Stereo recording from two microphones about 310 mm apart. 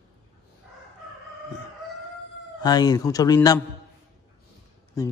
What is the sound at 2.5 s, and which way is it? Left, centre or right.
Speech, centre.